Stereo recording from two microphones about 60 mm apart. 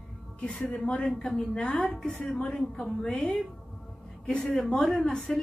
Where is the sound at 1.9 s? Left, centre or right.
Centre.